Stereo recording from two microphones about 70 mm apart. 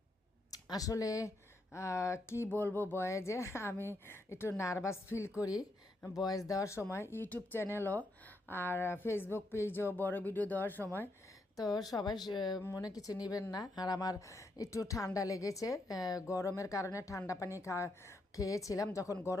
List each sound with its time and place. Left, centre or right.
0.5 s a woman's voice: left
2.5 s speech: left
5.4 s speech: left
6.5 s a woman's voice: left
6.9 s speech: left
11.5 s speech: left
12.7 s a woman's voice: left